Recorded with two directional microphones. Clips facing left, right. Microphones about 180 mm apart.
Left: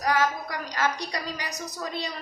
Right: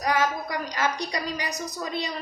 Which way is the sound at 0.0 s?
15° right (ahead or behind).